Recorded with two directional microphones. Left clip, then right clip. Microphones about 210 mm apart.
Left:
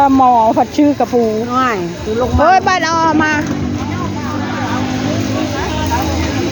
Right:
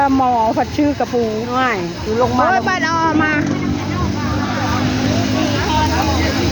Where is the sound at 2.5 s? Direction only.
25° left (ahead or behind).